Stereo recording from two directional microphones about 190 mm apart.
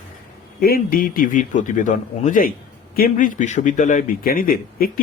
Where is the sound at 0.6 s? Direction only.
50° left (ahead or behind).